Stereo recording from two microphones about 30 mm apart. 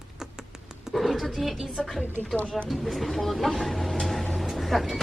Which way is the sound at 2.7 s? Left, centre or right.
Centre.